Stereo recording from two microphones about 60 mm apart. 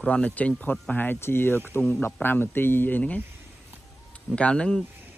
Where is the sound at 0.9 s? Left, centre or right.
Left.